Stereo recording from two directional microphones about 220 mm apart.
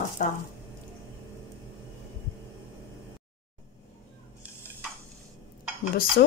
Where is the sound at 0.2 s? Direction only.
40° left (ahead or behind).